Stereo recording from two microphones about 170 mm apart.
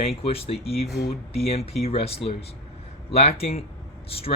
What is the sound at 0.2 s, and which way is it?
Speech, 35° left (ahead or behind).